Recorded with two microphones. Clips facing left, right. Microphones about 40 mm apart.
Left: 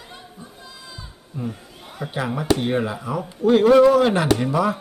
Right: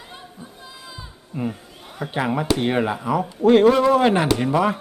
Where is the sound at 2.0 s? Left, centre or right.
Right.